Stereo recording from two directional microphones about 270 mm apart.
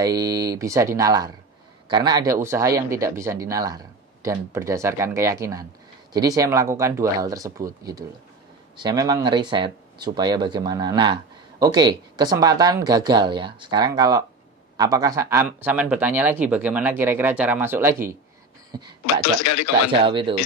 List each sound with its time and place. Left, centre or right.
0.0 s speech: centre
19.3 s speech: left
19.9 s speech: centre